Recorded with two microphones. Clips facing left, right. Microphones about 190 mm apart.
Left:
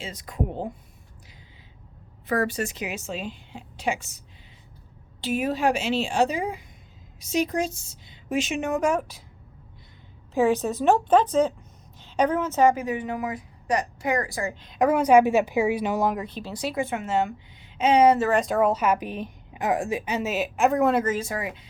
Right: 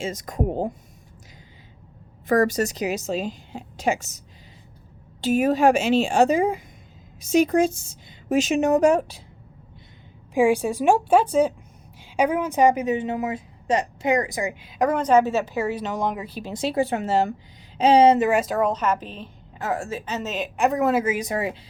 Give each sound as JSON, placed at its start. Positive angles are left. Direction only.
{"t": 0.0, "sound": "a woman's voice", "side_deg": -45}
{"t": 2.2, "sound": "a woman's voice", "side_deg": -45}
{"t": 5.2, "sound": "a woman's voice", "side_deg": -45}
{"t": 10.3, "sound": "a woman's voice", "side_deg": -10}
{"t": 14.6, "sound": "a woman's voice", "side_deg": 0}
{"t": 16.4, "sound": "a woman's voice", "side_deg": -25}
{"t": 18.3, "sound": "a woman's voice", "side_deg": -5}